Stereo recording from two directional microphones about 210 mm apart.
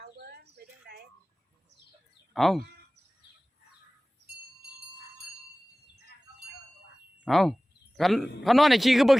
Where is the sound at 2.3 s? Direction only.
Centre (ahead or behind).